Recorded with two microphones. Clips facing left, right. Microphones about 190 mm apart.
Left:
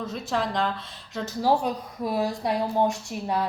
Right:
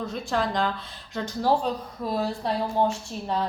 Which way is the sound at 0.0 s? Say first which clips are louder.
Right 1 dB; centre (ahead or behind).